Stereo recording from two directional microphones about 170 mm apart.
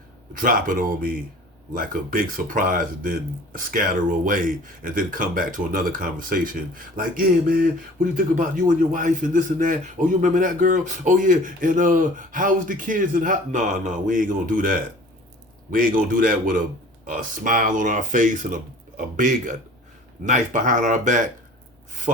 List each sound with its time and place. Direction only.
0.3 s a man's voice: 55° right (ahead or behind)